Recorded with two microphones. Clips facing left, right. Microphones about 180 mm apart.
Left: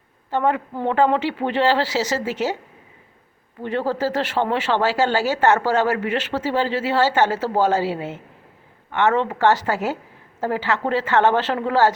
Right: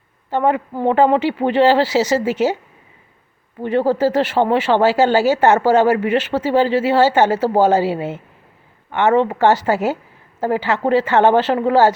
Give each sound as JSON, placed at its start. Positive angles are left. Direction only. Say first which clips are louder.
{"t": 0.3, "sound": "speech", "louder": "right 3 dB", "side_deg": -15}
{"t": 3.6, "sound": "speech", "louder": "right 6 dB", "side_deg": -15}